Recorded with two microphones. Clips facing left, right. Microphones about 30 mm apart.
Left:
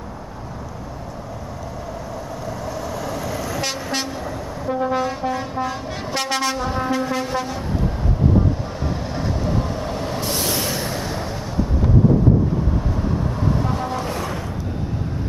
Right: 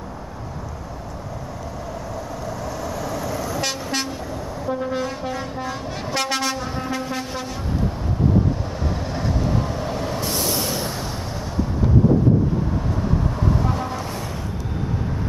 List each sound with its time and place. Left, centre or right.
2.6 s vehicle: centre
4.6 s vehicle: centre
5.2 s train: centre
6.7 s brass instrument: centre
9.1 s vehicle: centre
10.4 s a sound: left
13.4 s vehicle: centre